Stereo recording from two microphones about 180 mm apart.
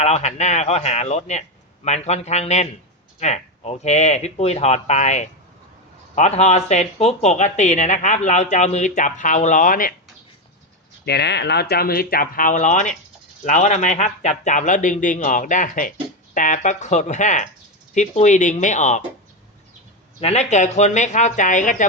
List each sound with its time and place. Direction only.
0.0 s speech: 35° left (ahead or behind)
11.0 s speech: 65° left (ahead or behind); by 19.0 s 40° left (ahead or behind)
20.2 s speech: 35° left (ahead or behind)